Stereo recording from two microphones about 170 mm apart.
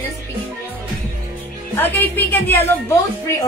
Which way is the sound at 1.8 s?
10° left (ahead or behind).